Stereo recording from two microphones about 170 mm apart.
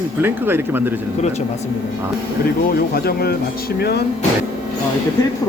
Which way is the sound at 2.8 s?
65° left (ahead or behind).